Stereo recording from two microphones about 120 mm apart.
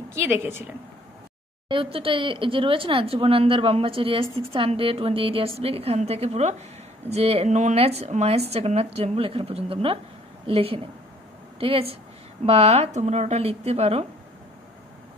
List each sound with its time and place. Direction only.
0.1 s a woman's voice: 20° right (ahead or behind)
1.7 s speech: 45° right (ahead or behind)